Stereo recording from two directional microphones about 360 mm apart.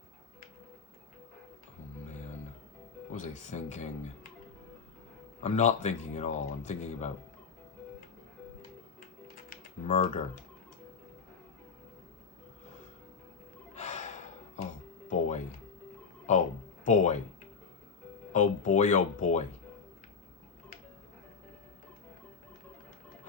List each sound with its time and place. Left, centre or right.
3.1 s speech: centre
5.4 s speech: centre
9.2 s typing: left
13.7 s music: centre
16.3 s a sound: centre
16.8 s music: centre
18.3 s music: centre